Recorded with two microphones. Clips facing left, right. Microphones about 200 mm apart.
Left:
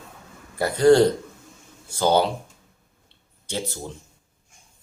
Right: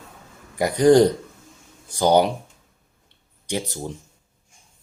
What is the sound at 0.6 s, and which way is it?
Speech, 15° right (ahead or behind).